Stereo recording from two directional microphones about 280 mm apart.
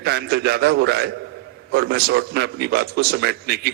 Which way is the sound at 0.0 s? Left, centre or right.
Right.